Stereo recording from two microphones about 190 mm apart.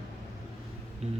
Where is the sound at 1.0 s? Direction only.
35° right (ahead or behind).